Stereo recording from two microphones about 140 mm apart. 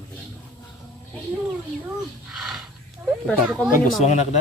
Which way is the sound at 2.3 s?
Centre (ahead or behind).